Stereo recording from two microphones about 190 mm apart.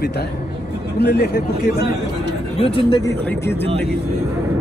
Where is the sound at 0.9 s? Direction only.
55° left (ahead or behind).